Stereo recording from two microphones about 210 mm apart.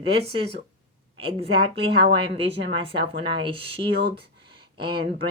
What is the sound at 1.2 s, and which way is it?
Speech, 25° right (ahead or behind).